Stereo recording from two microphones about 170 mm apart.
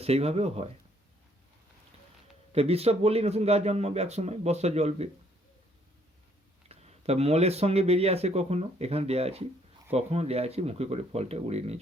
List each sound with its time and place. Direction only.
0.0 s speech: 35° right (ahead or behind)
2.5 s speech: 35° right (ahead or behind)
6.7 s speech: 40° right (ahead or behind)